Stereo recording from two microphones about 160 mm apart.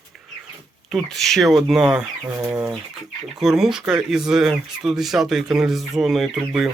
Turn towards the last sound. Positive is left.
turn(degrees=0)  # may be behind; listen again after turning